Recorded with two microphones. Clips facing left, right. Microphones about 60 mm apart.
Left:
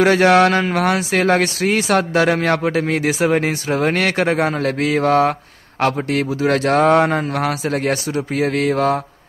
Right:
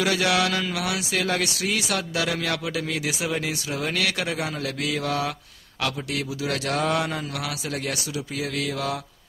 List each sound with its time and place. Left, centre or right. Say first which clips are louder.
0.0 s speech: left 10 dB; left